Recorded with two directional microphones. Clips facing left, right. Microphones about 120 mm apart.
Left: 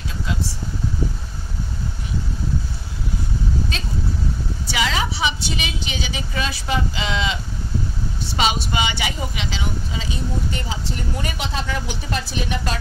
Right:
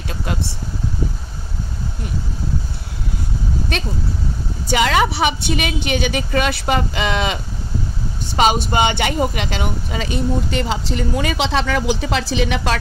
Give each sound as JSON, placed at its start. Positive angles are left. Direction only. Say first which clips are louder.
{"t": 0.1, "sound": "vehicle", "louder": "right 3 dB", "side_deg": -60}
{"t": 3.7, "sound": "a woman's voice", "louder": "right 7 dB", "side_deg": -60}
{"t": 4.6, "sound": "a woman's voice", "louder": "right 7 dB", "side_deg": -50}
{"t": 8.4, "sound": "speech", "louder": "right 6 dB", "side_deg": -45}